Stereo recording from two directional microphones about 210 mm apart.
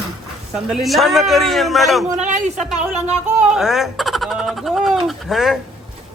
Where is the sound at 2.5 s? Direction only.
5° right (ahead or behind).